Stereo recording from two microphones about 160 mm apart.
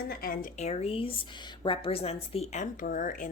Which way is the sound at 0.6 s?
45° left (ahead or behind).